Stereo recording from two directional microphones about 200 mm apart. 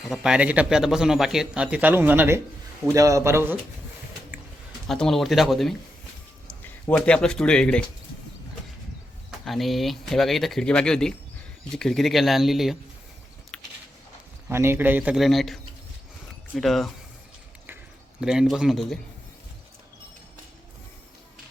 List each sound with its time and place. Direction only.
0.1 s a man's voice: 5° right (ahead or behind)
4.9 s speech: centre (ahead or behind)
9.4 s speech: centre (ahead or behind)
14.5 s a man's voice: 10° right (ahead or behind)
18.2 s speech: 5° right (ahead or behind)